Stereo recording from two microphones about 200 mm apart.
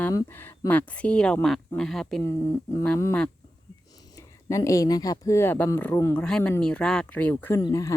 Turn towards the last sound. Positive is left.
turn(degrees=15)  # may be behind; listen again after turning